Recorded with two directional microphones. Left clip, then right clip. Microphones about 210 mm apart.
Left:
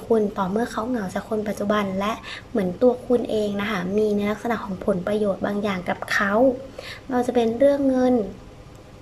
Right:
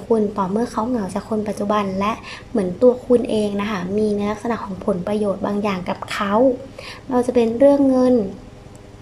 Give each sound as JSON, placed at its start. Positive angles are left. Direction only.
{"t": 0.1, "sound": "a woman's voice", "side_deg": 0}